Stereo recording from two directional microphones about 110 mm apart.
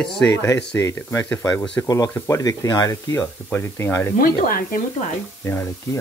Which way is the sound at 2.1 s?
25° left (ahead or behind).